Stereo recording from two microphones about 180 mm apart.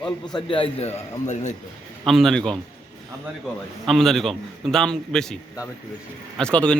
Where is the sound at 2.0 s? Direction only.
Centre (ahead or behind).